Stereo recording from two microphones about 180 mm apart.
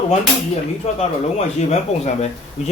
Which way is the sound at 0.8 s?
35° left (ahead or behind).